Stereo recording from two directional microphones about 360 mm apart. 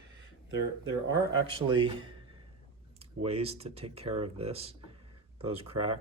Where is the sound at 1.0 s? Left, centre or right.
Centre.